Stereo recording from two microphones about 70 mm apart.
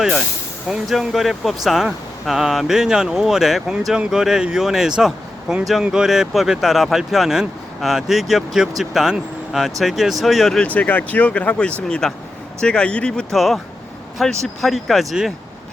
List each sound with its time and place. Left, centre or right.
0.7 s speech: centre
10.8 s speech: left; by 15.0 s centre